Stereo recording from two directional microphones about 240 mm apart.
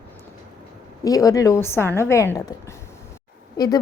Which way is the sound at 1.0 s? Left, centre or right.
Centre.